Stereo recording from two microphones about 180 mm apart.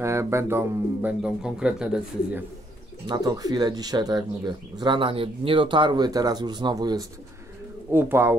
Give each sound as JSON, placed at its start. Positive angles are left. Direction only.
{"t": 0.0, "sound": "speech", "side_deg": -15}
{"t": 3.1, "sound": "speech", "side_deg": -20}